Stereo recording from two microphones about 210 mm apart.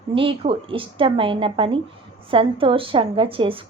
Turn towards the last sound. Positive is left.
turn(degrees=-25)  # may be behind; listen again after turning